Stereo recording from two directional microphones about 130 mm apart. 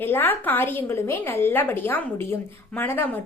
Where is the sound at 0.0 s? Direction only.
15° left (ahead or behind).